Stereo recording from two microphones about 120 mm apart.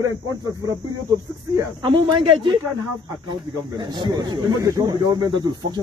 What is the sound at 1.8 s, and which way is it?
Speech, 45° right (ahead or behind).